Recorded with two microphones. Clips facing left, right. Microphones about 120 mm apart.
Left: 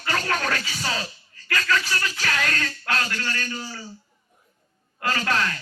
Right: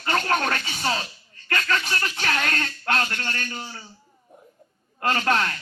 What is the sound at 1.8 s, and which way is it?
Music, 40° right (ahead or behind).